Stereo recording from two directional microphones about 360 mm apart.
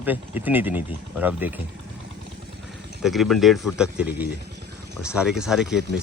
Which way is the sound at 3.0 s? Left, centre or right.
Centre.